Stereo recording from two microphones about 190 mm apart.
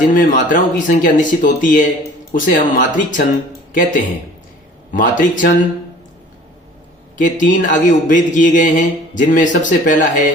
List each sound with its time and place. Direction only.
0.0 s a man's voice: 45° left (ahead or behind)
7.2 s a man's voice: 40° left (ahead or behind)